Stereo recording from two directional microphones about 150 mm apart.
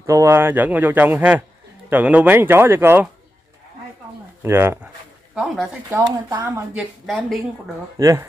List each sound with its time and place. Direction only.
0.0 s speech: 20° right (ahead or behind)
4.4 s speech: 15° right (ahead or behind)
5.3 s speech: centre (ahead or behind)
5.9 s speech: 25° right (ahead or behind)
6.4 s speech: 10° right (ahead or behind)
7.1 s speech: centre (ahead or behind)
8.0 s speech: 20° right (ahead or behind)